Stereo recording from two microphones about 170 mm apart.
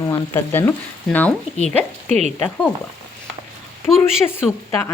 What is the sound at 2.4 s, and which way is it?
Speech, 5° left (ahead or behind).